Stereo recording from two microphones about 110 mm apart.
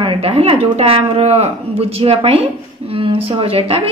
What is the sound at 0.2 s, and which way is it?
A woman's voice, 65° right (ahead or behind).